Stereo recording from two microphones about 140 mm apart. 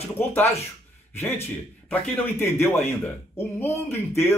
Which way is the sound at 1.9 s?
15° left (ahead or behind).